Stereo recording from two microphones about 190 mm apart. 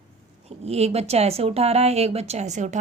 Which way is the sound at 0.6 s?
35° right (ahead or behind).